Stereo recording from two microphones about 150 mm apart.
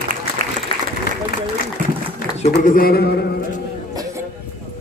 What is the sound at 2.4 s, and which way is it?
Speech, 65° left (ahead or behind).